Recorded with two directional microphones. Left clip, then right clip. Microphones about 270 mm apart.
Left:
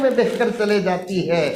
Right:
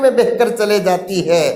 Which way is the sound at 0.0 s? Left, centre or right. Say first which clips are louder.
Right 6 dB; right.